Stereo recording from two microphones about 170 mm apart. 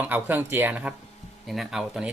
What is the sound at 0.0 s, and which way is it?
Speech, 10° right (ahead or behind).